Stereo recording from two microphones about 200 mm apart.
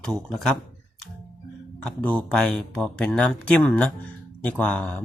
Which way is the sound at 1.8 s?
5° left (ahead or behind).